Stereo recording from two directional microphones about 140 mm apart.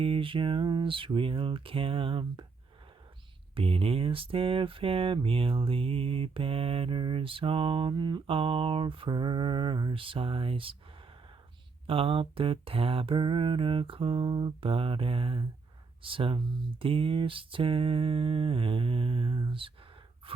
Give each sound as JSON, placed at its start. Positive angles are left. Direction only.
{"t": 0.0, "sound": "speech", "side_deg": -40}
{"t": 3.5, "sound": "speech", "side_deg": -40}
{"t": 11.9, "sound": "speech", "side_deg": -40}